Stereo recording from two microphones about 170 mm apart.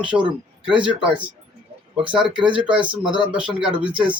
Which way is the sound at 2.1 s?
5° right (ahead or behind).